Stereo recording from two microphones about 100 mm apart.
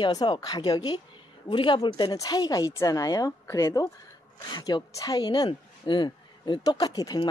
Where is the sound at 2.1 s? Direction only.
40° left (ahead or behind).